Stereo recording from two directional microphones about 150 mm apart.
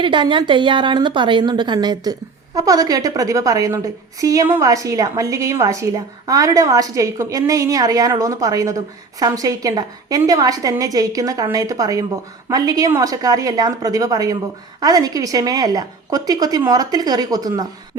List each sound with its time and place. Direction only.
0.0 s a woman's voice: 35° right (ahead or behind)